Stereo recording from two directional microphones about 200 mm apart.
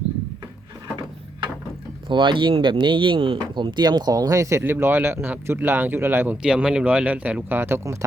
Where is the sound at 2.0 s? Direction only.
25° right (ahead or behind).